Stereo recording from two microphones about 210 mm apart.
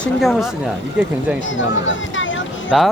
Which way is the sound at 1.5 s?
65° left (ahead or behind).